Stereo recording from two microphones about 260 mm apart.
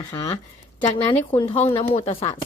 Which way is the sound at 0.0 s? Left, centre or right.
Centre.